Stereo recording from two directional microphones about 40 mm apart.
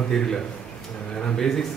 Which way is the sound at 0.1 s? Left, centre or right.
Centre.